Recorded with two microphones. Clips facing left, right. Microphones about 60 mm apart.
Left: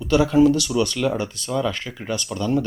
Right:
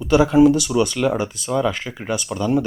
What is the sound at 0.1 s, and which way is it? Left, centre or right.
Speech, centre.